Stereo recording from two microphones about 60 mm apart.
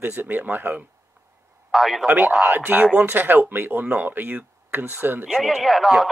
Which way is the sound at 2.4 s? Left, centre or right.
Right.